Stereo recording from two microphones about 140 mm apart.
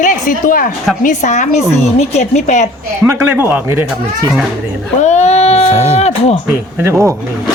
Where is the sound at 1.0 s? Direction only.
60° left (ahead or behind).